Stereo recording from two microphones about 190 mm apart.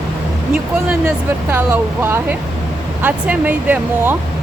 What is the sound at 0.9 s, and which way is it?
Speech, 10° right (ahead or behind).